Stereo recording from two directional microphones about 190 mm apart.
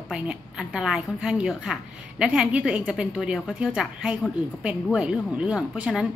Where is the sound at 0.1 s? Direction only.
5° right (ahead or behind).